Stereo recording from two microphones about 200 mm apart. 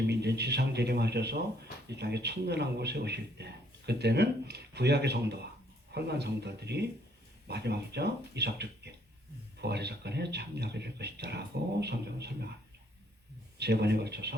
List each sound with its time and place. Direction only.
0.1 s a man's voice: 55° right (ahead or behind)
13.6 s a man's voice: 55° right (ahead or behind)